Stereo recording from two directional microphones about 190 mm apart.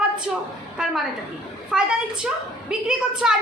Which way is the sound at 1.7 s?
5° right (ahead or behind).